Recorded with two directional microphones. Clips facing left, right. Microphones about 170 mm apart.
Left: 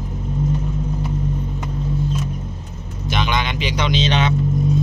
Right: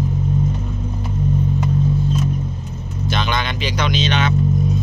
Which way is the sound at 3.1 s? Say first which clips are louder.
Left 1 dB; 15° left (ahead or behind).